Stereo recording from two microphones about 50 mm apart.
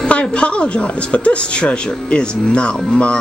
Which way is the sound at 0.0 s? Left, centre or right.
Left.